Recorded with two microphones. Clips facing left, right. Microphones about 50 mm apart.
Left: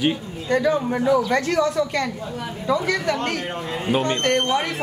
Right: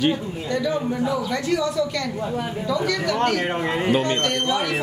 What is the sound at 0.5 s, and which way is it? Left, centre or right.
A man's voice, left.